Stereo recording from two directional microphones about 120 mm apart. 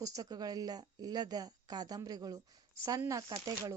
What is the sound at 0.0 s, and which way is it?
A woman's voice, 30° right (ahead or behind).